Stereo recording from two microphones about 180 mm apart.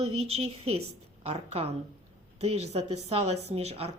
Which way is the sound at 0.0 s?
35° right (ahead or behind).